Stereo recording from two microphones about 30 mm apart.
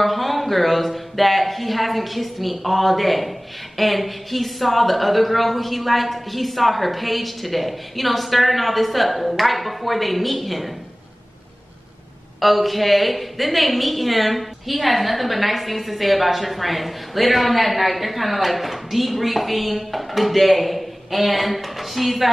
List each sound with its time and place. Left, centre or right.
0.0 s speech: centre
12.4 s speech: centre